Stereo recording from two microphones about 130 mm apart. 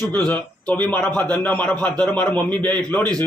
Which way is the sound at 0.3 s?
10° left (ahead or behind).